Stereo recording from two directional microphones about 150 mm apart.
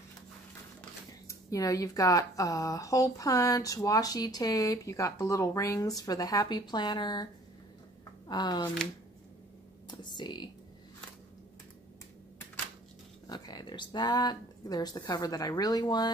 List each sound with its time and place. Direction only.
1.2 s speech: 25° left (ahead or behind)
8.3 s speech: 30° left (ahead or behind)
9.8 s speech: 30° left (ahead or behind)
13.3 s speech: 30° left (ahead or behind)